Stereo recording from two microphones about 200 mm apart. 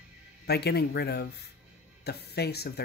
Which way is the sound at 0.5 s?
55° left (ahead or behind).